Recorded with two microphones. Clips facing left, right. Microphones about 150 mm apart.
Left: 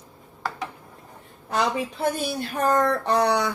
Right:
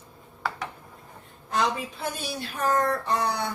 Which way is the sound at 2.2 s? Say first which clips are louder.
Left 4 dB; 50° left (ahead or behind).